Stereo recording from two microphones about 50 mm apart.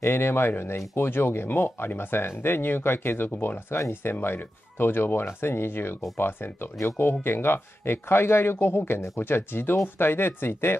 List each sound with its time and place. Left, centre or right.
0.0 s speech: left